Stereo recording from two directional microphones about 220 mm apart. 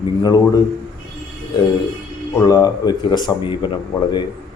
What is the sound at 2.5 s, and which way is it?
Speech, 20° left (ahead or behind).